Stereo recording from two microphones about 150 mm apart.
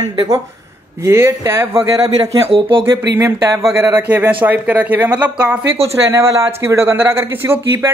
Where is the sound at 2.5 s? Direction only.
40° right (ahead or behind).